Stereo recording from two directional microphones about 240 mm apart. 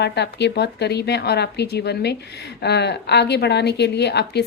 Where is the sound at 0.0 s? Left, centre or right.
Left.